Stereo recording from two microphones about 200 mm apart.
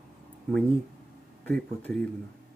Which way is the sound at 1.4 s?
5° left (ahead or behind).